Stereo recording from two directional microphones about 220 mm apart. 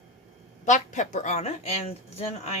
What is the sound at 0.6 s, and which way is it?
Speech, 35° left (ahead or behind).